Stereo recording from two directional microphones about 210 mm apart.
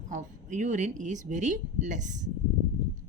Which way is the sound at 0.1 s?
35° right (ahead or behind).